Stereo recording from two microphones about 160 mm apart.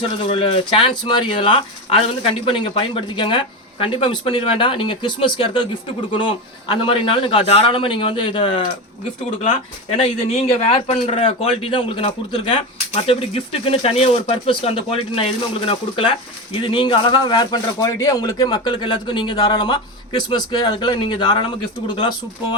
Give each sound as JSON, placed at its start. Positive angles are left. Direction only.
{"t": 0.3, "sound": "speech", "side_deg": 35}
{"t": 10.0, "sound": "a man's voice", "side_deg": 40}